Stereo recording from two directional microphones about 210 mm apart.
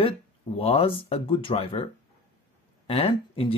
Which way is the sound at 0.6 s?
30° left (ahead or behind).